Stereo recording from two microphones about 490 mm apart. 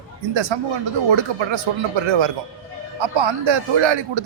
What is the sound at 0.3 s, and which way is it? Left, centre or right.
A man's voice, right.